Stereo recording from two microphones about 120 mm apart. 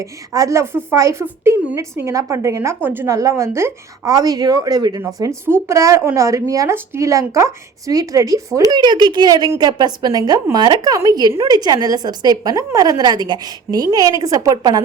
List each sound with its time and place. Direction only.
0.0 s a woman's voice: 25° right (ahead or behind)
5.0 s a woman's voice: 25° right (ahead or behind)